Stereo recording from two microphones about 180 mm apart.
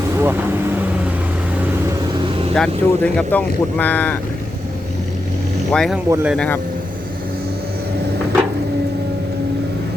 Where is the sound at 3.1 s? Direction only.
10° left (ahead or behind).